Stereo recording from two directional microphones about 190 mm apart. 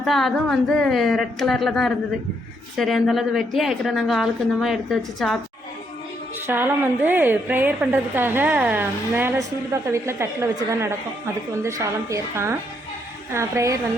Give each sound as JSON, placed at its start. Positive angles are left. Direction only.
{"t": 0.0, "sound": "a woman's voice", "side_deg": 0}
{"t": 6.5, "sound": "a woman's voice", "side_deg": -10}